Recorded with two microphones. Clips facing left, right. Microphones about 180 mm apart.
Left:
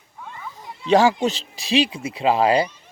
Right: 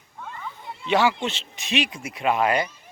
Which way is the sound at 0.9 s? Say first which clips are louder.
Left 5 dB; 40° left (ahead or behind).